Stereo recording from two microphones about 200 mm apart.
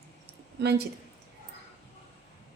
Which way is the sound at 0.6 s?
55° right (ahead or behind).